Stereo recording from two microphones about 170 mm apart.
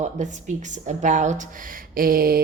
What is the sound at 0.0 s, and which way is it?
A woman's voice, 45° right (ahead or behind).